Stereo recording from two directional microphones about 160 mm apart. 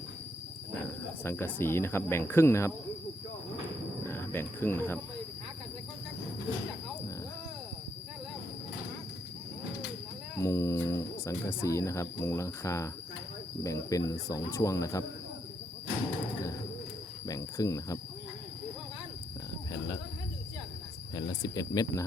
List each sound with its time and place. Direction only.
1.2 s speech: 15° left (ahead or behind)
4.0 s speech: 15° left (ahead or behind)
10.3 s speech: 15° left (ahead or behind)
17.2 s cricket: 20° left (ahead or behind)
21.2 s speech: 25° left (ahead or behind)